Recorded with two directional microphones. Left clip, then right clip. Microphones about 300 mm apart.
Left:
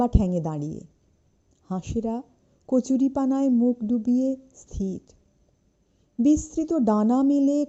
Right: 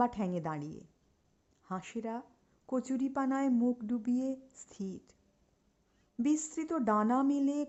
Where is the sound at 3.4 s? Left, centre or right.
Centre.